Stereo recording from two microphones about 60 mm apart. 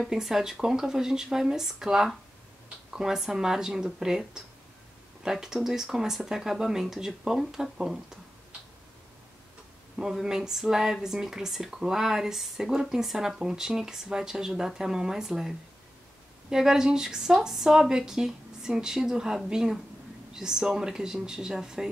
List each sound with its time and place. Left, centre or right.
0.0 s speech: centre
9.9 s speech: centre